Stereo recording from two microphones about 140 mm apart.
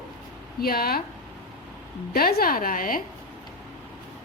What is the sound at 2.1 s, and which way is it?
Speech, 90° left.